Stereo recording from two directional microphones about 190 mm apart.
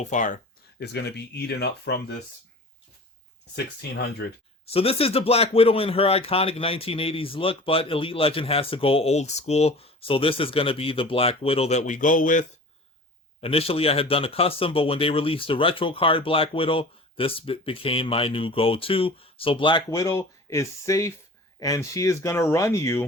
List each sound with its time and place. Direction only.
0.0 s speech: 40° left (ahead or behind)
0.8 s speech: 60° left (ahead or behind)
3.5 s speech: 60° left (ahead or behind)
4.7 s speech: 30° left (ahead or behind)
13.4 s speech: 30° left (ahead or behind); by 23.0 s 15° left (ahead or behind)